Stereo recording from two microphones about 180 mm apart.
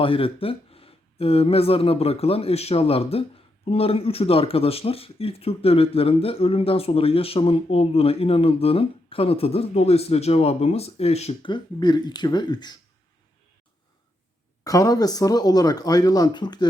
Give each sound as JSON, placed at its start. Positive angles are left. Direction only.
{"t": 0.0, "sound": "speech", "side_deg": 30}
{"t": 14.6, "sound": "speech", "side_deg": 20}